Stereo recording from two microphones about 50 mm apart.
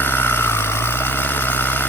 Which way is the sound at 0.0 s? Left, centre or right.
Left.